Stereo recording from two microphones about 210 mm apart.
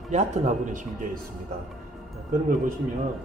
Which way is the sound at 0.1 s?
35° right (ahead or behind).